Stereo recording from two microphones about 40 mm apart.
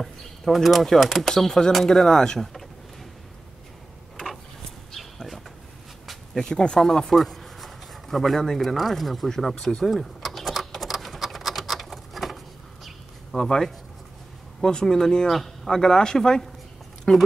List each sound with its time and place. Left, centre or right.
0.0 s speech: centre
1.3 s speech: centre
4.9 s a sound: centre
6.5 s speech: centre
9.8 s a sound: centre
13.3 s speech: centre